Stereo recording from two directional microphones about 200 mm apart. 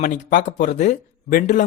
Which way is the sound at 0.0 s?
40° left (ahead or behind).